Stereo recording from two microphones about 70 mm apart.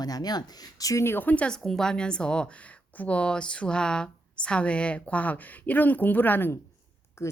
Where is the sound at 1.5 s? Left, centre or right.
Centre.